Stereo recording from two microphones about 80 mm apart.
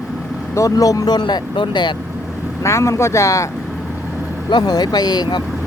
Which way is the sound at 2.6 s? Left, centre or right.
Left.